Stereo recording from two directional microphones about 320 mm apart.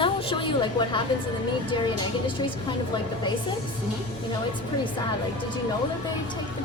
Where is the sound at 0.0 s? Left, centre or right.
Centre.